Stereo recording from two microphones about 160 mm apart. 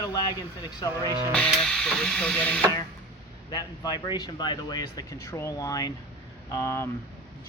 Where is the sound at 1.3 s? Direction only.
5° left (ahead or behind).